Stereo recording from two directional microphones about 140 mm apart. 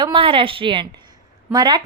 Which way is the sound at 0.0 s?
40° right (ahead or behind).